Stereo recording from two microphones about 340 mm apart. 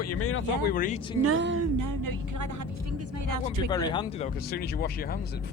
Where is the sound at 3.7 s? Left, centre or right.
Centre.